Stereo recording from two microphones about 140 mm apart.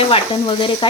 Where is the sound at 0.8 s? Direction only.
35° left (ahead or behind).